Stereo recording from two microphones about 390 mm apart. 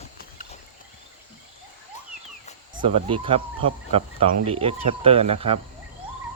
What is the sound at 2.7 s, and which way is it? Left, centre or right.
Speech, centre.